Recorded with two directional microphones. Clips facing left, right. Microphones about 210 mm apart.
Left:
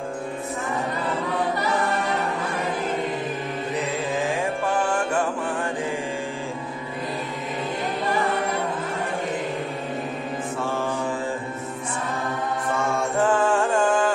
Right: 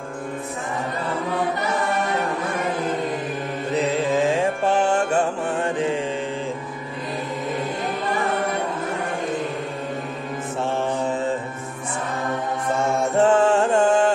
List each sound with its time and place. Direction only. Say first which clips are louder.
4.2 s music: right 4 dB; 25° right (ahead or behind)
13.2 s music: right 4 dB; 25° right (ahead or behind)